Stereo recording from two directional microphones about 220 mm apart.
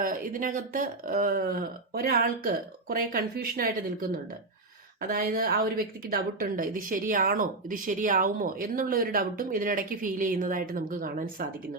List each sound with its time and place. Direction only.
0.0 s a woman's voice: 40° right (ahead or behind)
4.9 s a woman's voice: 40° right (ahead or behind)